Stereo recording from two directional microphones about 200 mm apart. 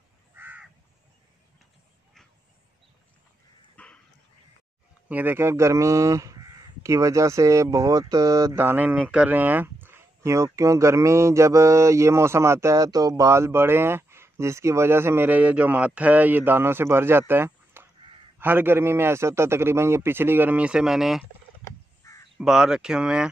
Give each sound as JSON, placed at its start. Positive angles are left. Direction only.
{"t": 0.4, "sound": "crow", "side_deg": -10}
{"t": 3.7, "sound": "dog", "side_deg": 5}
{"t": 5.0, "sound": "speech", "side_deg": -10}
{"t": 22.0, "sound": "crow", "side_deg": 15}
{"t": 22.4, "sound": "speech", "side_deg": -5}